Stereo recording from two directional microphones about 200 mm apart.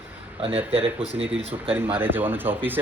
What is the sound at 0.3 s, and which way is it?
Speech, 30° right (ahead or behind).